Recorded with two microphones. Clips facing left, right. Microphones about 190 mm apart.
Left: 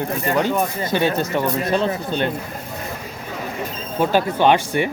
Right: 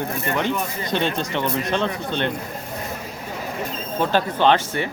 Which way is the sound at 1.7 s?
35° left (ahead or behind).